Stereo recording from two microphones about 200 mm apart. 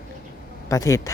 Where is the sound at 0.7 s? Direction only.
15° left (ahead or behind).